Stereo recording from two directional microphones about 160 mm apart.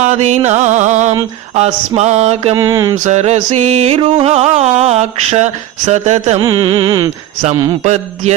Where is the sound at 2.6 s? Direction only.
20° right (ahead or behind).